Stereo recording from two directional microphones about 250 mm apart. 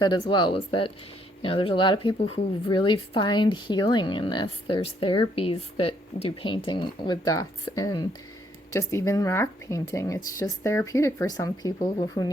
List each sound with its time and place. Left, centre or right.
0.0 s a woman's voice: centre